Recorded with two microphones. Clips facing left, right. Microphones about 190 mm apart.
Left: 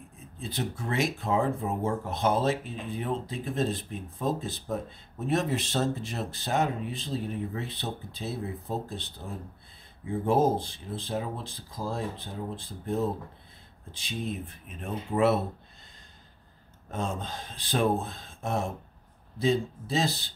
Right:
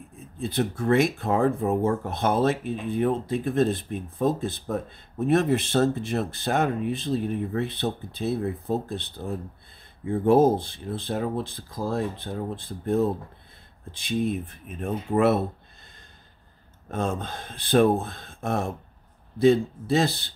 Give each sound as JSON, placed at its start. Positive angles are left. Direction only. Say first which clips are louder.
{"t": 0.4, "sound": "speech", "louder": "right 7 dB", "side_deg": -60}
{"t": 10.0, "sound": "speech", "louder": "right 6 dB", "side_deg": -60}
{"t": 14.7, "sound": "speech", "louder": "right 6 dB", "side_deg": -50}
{"t": 16.9, "sound": "speech", "louder": "right 5 dB", "side_deg": -55}